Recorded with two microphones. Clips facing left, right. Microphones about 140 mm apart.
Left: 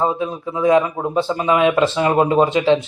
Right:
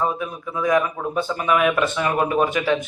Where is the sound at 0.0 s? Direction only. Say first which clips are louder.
Left 4 dB; 25° left (ahead or behind).